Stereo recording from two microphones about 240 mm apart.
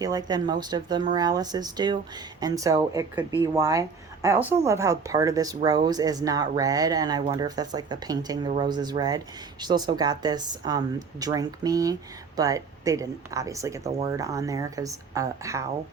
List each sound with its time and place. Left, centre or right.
0.0 s speech: centre